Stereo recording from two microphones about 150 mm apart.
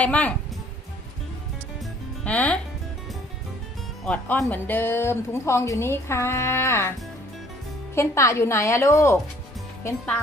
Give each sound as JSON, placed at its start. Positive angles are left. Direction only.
{"t": 0.0, "sound": "speech", "side_deg": 10}
{"t": 2.2, "sound": "speech", "side_deg": 10}
{"t": 4.0, "sound": "speech", "side_deg": 5}
{"t": 7.9, "sound": "a woman's voice", "side_deg": 20}